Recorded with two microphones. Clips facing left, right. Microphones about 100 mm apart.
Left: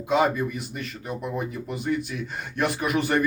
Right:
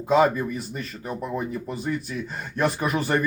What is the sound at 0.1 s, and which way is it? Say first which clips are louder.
Speech: right 3 dB; 35° right (ahead or behind).